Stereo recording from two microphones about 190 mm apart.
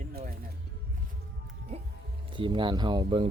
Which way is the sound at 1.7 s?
35° right (ahead or behind).